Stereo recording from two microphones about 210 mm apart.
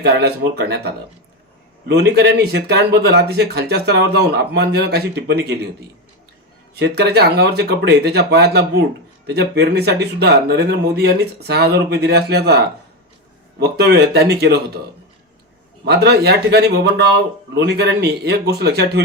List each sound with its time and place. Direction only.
0.0 s speech: 50° right (ahead or behind)
6.7 s speech: 55° right (ahead or behind)
13.6 s speech: 50° right (ahead or behind)
15.8 s speech: 50° right (ahead or behind)